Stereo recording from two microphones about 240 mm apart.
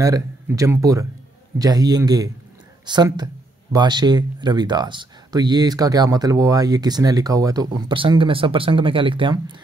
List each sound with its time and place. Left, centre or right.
0.0 s speech: centre